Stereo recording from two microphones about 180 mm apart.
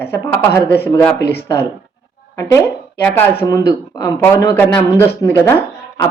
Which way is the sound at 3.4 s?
20° left (ahead or behind).